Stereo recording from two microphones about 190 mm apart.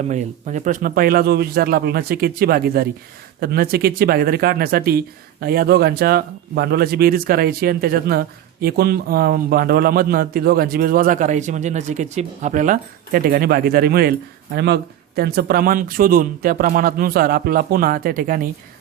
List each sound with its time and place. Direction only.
0.0 s speech: 40° right (ahead or behind)